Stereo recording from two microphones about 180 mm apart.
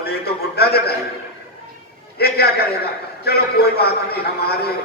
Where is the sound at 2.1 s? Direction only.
60° left (ahead or behind).